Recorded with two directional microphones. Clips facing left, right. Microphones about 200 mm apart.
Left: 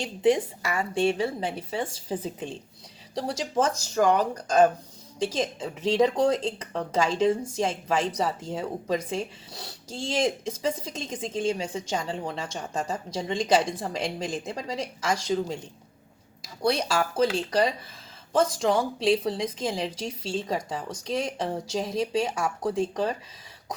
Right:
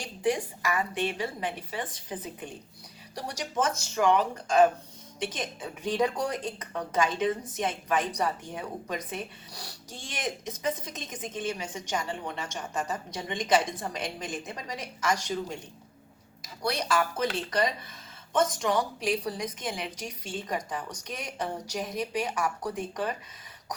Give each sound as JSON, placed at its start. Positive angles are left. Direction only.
{"t": 0.0, "sound": "a woman's voice", "side_deg": 25}
{"t": 16.4, "sound": "a woman's voice", "side_deg": 30}